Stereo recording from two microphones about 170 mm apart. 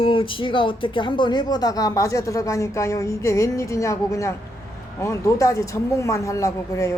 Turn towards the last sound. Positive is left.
turn(degrees=20)  # may be behind; listen again after turning